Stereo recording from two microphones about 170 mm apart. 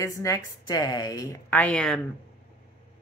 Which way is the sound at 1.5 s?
10° left (ahead or behind).